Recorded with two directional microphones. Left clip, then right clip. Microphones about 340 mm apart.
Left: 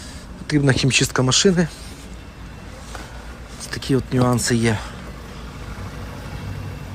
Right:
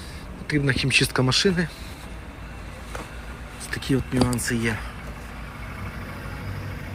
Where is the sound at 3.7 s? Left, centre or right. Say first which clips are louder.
Left 3 dB; centre.